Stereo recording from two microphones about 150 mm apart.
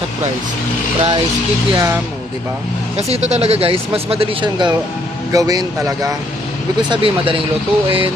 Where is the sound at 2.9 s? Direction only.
45° right (ahead or behind).